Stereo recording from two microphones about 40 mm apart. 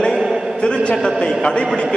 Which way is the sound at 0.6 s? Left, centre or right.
Centre.